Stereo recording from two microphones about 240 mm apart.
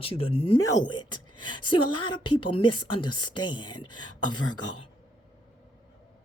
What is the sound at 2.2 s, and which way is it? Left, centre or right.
Speech, left.